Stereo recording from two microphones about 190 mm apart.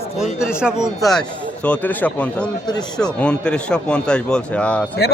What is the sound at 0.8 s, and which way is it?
A man's voice, centre (ahead or behind).